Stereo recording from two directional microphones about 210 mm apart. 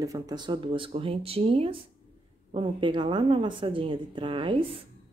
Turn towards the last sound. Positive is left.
turn(degrees=-25)  # may be behind; listen again after turning